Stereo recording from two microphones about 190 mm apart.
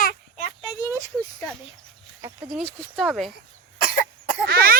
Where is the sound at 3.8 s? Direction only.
50° left (ahead or behind).